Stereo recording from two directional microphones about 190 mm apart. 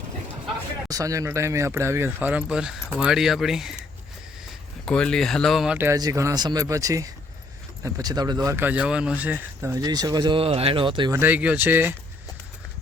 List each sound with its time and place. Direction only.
0.9 s speech: 20° right (ahead or behind); by 3.8 s centre (ahead or behind)
4.9 s speech: 5° left (ahead or behind); by 11.2 s 25° right (ahead or behind)
11.2 s speech: 10° right (ahead or behind)